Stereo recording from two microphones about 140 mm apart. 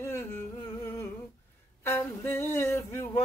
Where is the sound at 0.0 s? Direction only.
15° left (ahead or behind).